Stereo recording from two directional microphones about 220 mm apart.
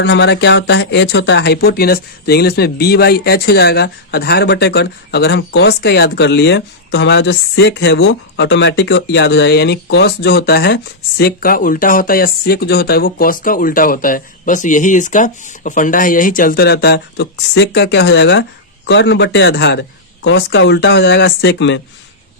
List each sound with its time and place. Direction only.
0.0 s speech: 55° left (ahead or behind)